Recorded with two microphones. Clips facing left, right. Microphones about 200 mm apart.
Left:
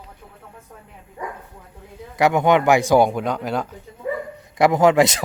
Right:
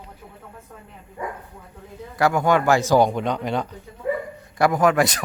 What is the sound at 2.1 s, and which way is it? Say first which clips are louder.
Speech: left 3 dB; 20° left (ahead or behind).